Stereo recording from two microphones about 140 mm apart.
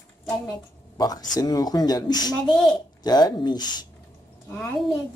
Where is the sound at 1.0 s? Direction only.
30° left (ahead or behind).